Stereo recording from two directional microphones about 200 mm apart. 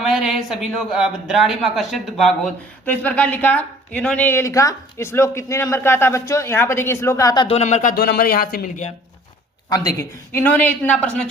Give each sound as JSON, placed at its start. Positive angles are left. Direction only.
{"t": 0.0, "sound": "speech", "side_deg": -5}
{"t": 7.4, "sound": "speech", "side_deg": 35}
{"t": 9.6, "sound": "speech", "side_deg": 15}